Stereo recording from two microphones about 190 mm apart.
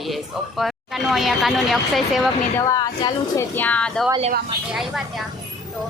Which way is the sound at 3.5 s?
10° left (ahead or behind).